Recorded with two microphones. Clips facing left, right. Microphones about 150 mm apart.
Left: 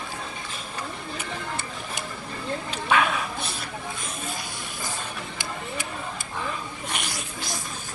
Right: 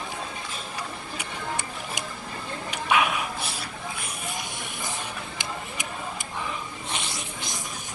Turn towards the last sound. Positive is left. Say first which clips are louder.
# left 2 dB
turn(degrees=-20)  # may be behind; listen again after turning